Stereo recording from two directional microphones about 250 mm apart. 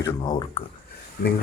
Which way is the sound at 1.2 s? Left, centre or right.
Left.